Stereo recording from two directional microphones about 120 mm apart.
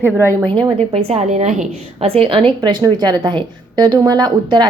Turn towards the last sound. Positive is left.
turn(degrees=-35)  # may be behind; listen again after turning